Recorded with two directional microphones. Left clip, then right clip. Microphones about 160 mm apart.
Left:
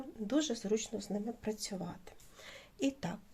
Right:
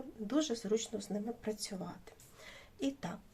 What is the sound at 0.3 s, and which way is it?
A woman's voice, 25° left (ahead or behind).